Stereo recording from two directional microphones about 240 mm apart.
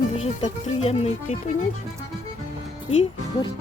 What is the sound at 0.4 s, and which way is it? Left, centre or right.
Speech, left.